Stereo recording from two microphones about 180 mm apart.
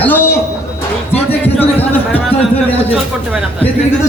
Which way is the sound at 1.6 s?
10° left (ahead or behind).